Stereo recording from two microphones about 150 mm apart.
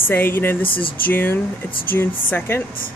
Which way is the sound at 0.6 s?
35° left (ahead or behind).